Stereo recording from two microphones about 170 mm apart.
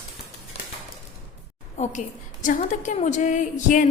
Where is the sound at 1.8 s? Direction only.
45° left (ahead or behind).